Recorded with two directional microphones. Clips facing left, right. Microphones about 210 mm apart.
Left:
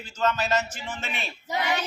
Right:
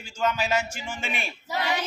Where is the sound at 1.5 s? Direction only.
20° left (ahead or behind).